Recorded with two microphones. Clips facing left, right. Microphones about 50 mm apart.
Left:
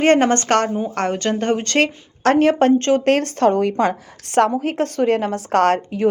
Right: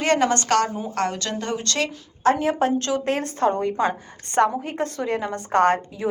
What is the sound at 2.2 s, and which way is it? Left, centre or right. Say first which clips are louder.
Speech: left 6 dB; left.